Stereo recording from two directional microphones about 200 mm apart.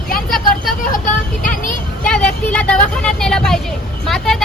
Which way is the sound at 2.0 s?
5° left (ahead or behind).